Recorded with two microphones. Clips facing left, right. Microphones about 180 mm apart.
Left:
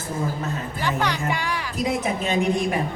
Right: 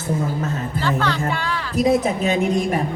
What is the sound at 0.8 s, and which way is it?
Speech, 15° left (ahead or behind).